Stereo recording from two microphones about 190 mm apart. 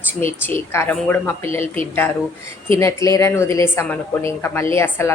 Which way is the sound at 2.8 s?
15° left (ahead or behind).